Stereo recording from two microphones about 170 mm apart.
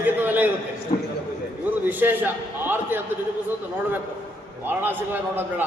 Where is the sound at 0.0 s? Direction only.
10° right (ahead or behind).